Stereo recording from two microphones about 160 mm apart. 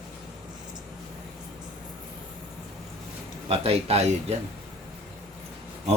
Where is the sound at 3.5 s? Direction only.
40° right (ahead or behind).